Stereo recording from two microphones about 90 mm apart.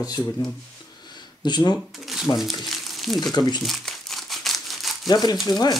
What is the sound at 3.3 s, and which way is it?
Speech, 55° left (ahead or behind).